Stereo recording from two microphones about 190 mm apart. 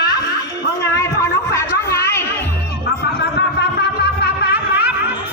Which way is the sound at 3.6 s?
60° left (ahead or behind).